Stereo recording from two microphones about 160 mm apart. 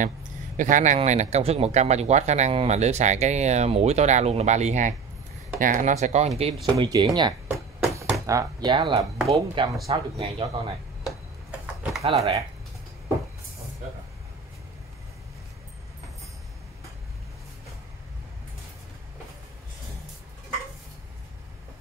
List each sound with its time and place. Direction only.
0.6 s speech: 55° right (ahead or behind)
6.6 s speech: 30° right (ahead or behind)
7.5 s a sound: 20° right (ahead or behind)
8.3 s speech: 25° right (ahead or behind)
12.0 s speech: 40° right (ahead or behind)